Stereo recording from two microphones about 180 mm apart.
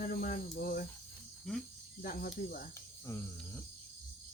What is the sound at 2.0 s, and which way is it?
Speech, 50° left (ahead or behind).